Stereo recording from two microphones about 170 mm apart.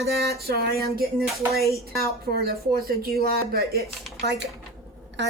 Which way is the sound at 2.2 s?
65° right (ahead or behind).